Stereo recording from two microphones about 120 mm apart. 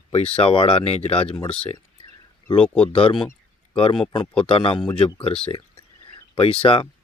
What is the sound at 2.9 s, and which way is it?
Speech, 50° left (ahead or behind).